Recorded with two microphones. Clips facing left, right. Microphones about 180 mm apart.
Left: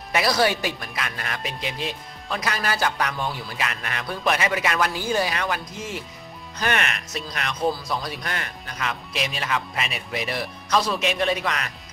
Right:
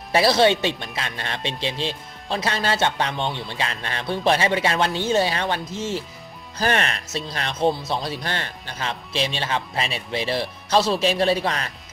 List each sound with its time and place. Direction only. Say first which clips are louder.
0.1 s speech: right 4 dB; 30° right (ahead or behind)